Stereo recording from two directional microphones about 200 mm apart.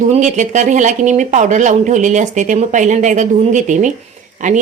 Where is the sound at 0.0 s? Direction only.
35° right (ahead or behind).